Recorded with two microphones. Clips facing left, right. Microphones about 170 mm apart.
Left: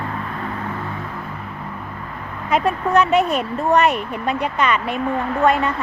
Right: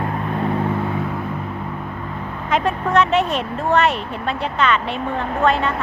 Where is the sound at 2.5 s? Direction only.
10° left (ahead or behind).